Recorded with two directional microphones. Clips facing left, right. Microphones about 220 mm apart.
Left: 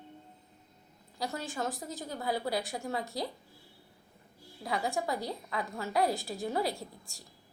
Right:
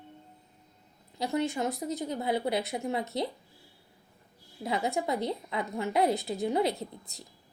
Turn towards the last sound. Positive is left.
turn(degrees=-20)  # may be behind; listen again after turning